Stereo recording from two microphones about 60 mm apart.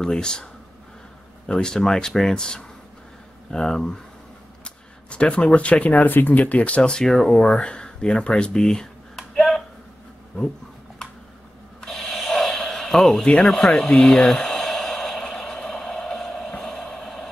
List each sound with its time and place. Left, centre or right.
0.0 s speech: centre
1.5 s speech: centre
7.4 s a sound: centre
11.8 s snort: centre
15.3 s a sound: centre
16.5 s music: centre